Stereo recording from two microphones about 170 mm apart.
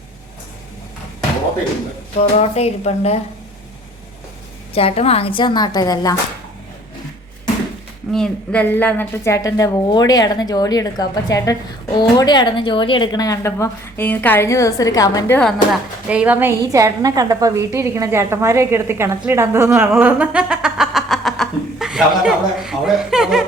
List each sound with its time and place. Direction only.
2.1 s speech: 40° left (ahead or behind)
4.7 s a woman's voice: 35° left (ahead or behind)
8.1 s a woman's voice: 5° left (ahead or behind); by 15.4 s 20° left (ahead or behind)
16.0 s a woman's voice: 10° right (ahead or behind)
19.9 s a sound: 10° right (ahead or behind)